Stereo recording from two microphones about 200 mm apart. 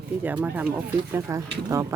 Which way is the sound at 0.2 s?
10° right (ahead or behind).